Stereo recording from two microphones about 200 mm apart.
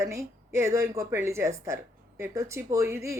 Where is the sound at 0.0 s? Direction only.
15° right (ahead or behind).